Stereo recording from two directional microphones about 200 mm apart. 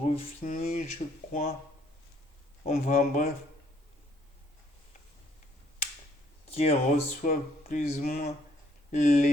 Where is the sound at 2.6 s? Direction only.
35° left (ahead or behind).